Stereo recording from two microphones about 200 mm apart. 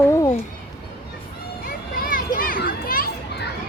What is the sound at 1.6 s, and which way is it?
Children playing, 45° left (ahead or behind).